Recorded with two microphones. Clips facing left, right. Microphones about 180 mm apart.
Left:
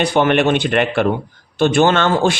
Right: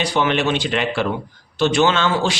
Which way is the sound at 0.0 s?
55° left (ahead or behind).